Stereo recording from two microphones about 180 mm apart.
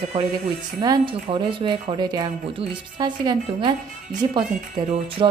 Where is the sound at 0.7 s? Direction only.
25° right (ahead or behind).